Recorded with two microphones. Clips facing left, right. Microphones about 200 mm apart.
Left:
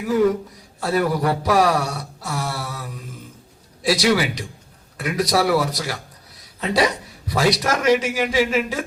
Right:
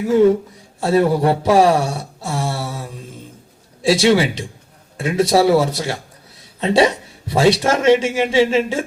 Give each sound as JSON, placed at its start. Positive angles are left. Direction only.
{"t": 0.0, "sound": "speech", "side_deg": -25}